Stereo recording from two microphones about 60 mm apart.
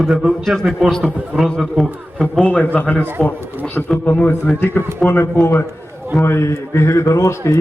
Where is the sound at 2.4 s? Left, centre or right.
Left.